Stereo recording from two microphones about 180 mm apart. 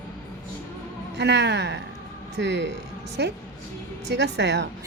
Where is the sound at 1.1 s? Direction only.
70° right (ahead or behind).